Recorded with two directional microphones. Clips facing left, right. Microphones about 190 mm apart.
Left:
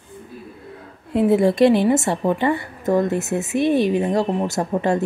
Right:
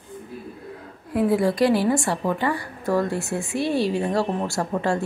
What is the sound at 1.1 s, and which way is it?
A woman's voice, 25° left (ahead or behind).